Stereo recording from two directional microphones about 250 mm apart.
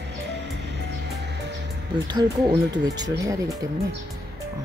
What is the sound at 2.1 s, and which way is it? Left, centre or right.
Speech, centre.